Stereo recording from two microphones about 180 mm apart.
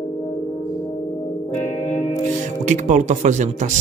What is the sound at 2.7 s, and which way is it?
Speech, 40° right (ahead or behind).